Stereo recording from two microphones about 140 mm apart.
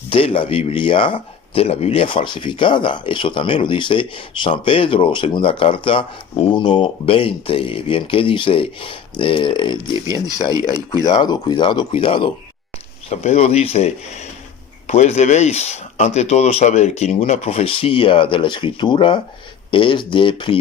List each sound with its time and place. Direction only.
0.1 s speech: 40° left (ahead or behind)
13.1 s speech: 50° left (ahead or behind)